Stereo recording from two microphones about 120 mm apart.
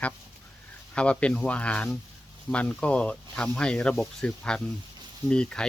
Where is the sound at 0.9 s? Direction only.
10° left (ahead or behind).